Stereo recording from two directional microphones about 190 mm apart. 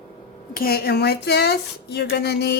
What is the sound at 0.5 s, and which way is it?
Speech, 55° left (ahead or behind).